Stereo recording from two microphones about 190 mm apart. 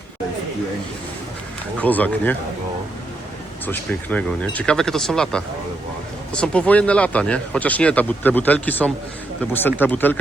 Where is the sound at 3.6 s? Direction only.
10° left (ahead or behind).